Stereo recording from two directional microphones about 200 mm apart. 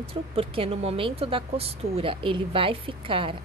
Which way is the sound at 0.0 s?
30° right (ahead or behind).